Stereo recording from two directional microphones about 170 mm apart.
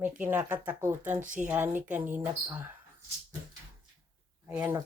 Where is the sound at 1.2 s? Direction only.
50° right (ahead or behind).